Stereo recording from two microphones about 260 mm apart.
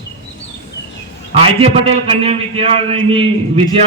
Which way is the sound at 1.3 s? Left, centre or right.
Right.